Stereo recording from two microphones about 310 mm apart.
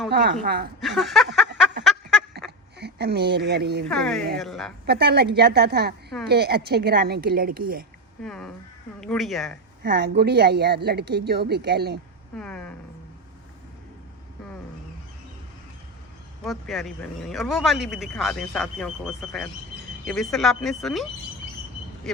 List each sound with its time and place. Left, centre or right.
0.1 s speech: right
0.8 s speech: centre
1.8 s a sound: centre
2.7 s speech: right
3.8 s speech: centre
4.9 s a woman's voice: right
8.2 s speech: centre
9.8 s speech: right
12.4 s speech: centre
16.4 s speech: centre